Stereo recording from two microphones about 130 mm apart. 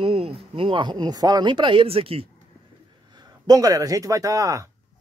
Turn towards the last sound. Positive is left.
turn(degrees=-25)  # may be behind; listen again after turning